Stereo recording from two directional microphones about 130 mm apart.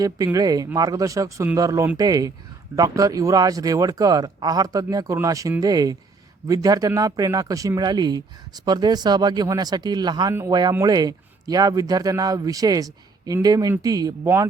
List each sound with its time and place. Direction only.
0.3 s a man's voice: 30° right (ahead or behind)